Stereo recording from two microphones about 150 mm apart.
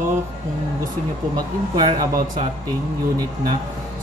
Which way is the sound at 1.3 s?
25° right (ahead or behind).